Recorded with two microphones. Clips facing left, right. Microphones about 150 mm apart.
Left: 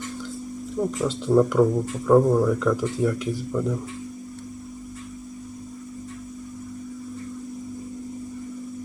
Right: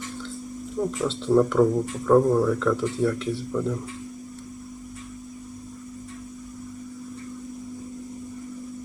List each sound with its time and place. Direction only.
0.8 s speech: centre (ahead or behind)